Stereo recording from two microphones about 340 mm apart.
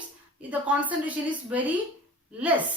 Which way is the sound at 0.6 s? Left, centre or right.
Centre.